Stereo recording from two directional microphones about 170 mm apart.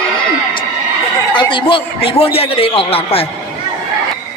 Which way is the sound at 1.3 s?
30° left (ahead or behind).